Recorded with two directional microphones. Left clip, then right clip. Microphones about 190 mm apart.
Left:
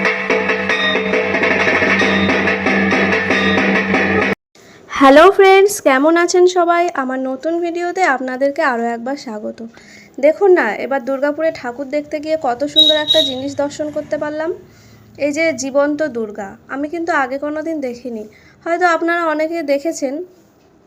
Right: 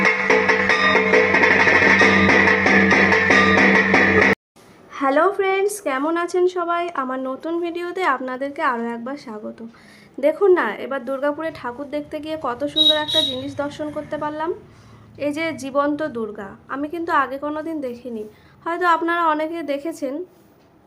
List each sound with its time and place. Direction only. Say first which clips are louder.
0.0 s music: left 1 dB; 20° right (ahead or behind)
4.9 s a woman's voice: left 10 dB; 45° left (ahead or behind); by 20.1 s 15° left (ahead or behind)